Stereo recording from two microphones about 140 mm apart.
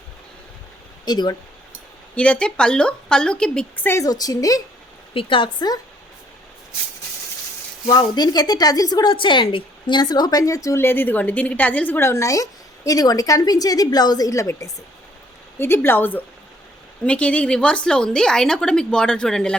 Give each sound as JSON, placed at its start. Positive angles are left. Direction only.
{"t": 1.0, "sound": "a woman's voice", "side_deg": 30}
{"t": 2.1, "sound": "a woman's voice", "side_deg": 10}
{"t": 5.1, "sound": "a woman's voice", "side_deg": 35}
{"t": 7.9, "sound": "a woman's voice", "side_deg": 30}